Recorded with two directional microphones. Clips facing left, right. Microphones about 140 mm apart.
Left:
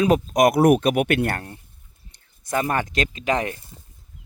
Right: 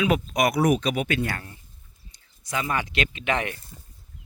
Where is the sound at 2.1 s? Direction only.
50° left (ahead or behind).